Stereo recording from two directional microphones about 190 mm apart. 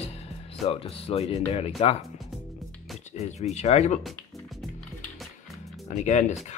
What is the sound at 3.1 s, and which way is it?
Speech, 35° left (ahead or behind).